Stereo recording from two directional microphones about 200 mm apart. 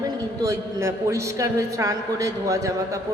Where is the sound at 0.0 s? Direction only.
15° right (ahead or behind).